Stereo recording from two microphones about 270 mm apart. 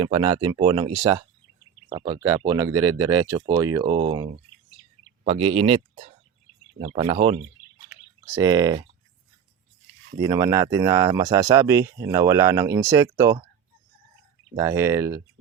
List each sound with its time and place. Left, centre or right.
0.0 s speech: centre
8.4 s speech: centre
10.2 s speech: centre
14.5 s speech: centre